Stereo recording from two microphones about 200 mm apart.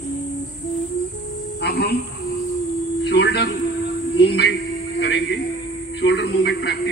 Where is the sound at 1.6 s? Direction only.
55° left (ahead or behind).